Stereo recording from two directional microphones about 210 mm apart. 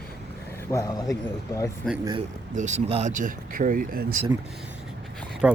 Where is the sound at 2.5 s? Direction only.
35° right (ahead or behind).